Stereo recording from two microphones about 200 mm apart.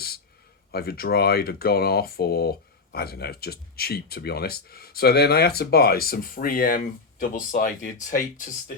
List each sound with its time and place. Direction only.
0.7 s speech: 50° left (ahead or behind)